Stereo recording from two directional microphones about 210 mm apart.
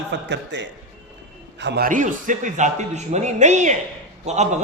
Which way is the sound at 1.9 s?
40° right (ahead or behind).